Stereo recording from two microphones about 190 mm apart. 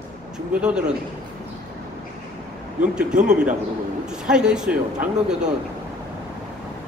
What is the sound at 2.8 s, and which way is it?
A man's voice, 5° right (ahead or behind).